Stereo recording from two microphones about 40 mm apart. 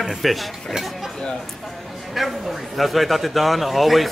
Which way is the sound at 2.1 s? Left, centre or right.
Centre.